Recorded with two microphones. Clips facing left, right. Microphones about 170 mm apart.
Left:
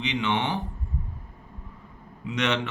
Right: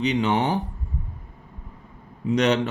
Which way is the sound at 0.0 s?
40° right (ahead or behind).